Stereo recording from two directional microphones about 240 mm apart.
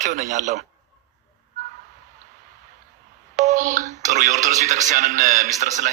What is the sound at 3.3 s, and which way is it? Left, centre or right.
Speech, right.